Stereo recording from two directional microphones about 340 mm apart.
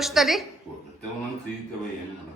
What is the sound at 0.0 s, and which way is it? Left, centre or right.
Speech, centre.